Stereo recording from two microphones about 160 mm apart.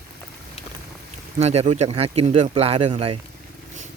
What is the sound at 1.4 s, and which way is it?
Speech, 40° right (ahead or behind).